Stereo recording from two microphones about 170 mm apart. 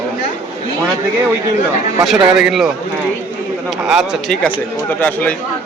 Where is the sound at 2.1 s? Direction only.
5° right (ahead or behind).